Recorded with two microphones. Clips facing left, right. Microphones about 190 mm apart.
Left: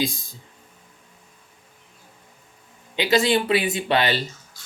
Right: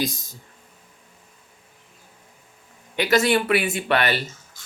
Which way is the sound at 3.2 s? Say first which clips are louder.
Even; 15° left (ahead or behind).